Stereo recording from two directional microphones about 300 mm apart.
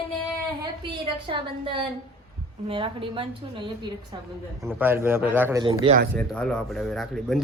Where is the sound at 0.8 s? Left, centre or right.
Centre.